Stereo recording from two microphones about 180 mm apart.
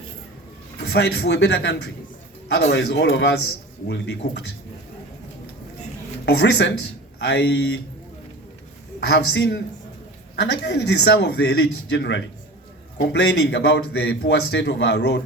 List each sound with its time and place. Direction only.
0.9 s a man's voice: 65° left (ahead or behind)
6.2 s a man's voice: 70° left (ahead or behind)
9.0 s a man's voice: 70° left (ahead or behind)